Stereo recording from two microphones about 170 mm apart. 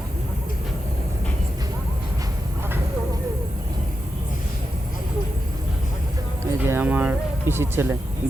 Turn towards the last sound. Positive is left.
turn(degrees=-15)  # may be behind; listen again after turning